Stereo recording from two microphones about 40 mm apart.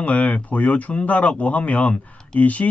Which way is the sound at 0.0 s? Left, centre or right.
Left.